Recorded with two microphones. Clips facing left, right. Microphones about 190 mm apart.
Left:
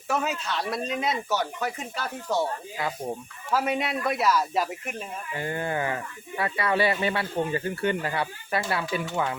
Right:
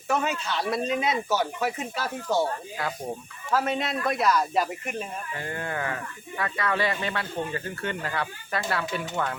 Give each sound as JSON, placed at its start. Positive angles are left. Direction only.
{"t": 0.1, "sound": "speech", "side_deg": 0}
{"t": 5.3, "sound": "speech", "side_deg": 20}
{"t": 6.6, "sound": "speech", "side_deg": 10}